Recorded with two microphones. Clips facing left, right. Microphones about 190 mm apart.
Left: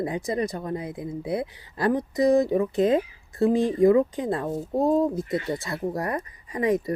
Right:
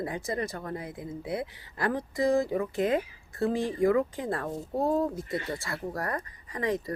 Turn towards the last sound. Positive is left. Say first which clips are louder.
# left 6 dB
turn(degrees=20)  # may be behind; listen again after turning